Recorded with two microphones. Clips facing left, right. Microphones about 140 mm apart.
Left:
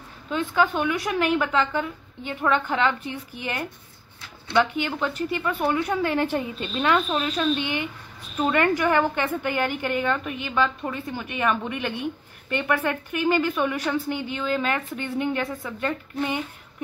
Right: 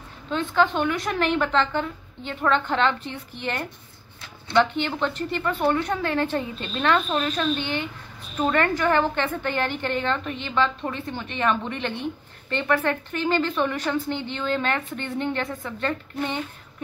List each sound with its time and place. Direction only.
0.3 s a woman's voice: 10° left (ahead or behind)